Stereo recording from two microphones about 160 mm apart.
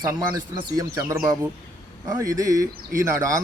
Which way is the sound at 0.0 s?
25° right (ahead or behind).